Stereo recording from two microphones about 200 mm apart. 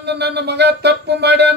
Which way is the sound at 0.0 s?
55° right (ahead or behind).